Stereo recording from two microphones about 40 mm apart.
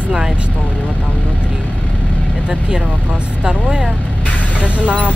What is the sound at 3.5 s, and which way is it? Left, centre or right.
Speech, right.